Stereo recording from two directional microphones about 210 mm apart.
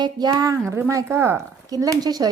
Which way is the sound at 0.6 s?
10° right (ahead or behind).